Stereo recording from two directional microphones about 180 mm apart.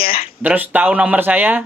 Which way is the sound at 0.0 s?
30° left (ahead or behind).